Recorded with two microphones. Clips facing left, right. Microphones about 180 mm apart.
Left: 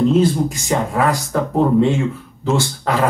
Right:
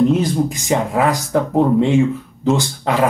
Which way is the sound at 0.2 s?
20° right (ahead or behind).